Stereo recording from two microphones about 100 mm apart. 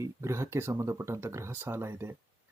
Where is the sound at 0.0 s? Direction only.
30° right (ahead or behind).